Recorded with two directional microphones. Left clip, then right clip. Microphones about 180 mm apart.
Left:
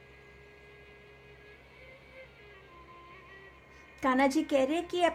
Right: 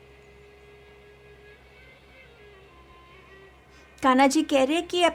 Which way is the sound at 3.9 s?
40° right (ahead or behind).